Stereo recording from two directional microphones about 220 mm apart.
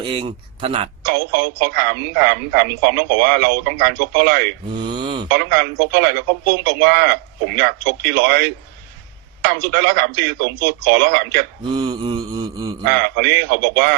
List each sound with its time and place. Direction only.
0.0 s mantra: 20° right (ahead or behind)
1.0 s speech: 45° right (ahead or behind)
4.7 s mantra: 20° right (ahead or behind)
5.3 s speech: 45° right (ahead or behind)
11.7 s mantra: 20° right (ahead or behind)
12.9 s speech: 45° right (ahead or behind)